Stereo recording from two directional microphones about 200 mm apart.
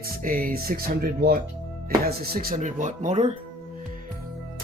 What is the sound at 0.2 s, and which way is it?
Speech, 45° right (ahead or behind).